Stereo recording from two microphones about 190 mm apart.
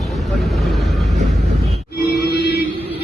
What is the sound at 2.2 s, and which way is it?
Music, 55° left (ahead or behind).